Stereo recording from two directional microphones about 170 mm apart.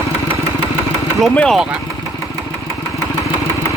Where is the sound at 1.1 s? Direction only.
5° left (ahead or behind).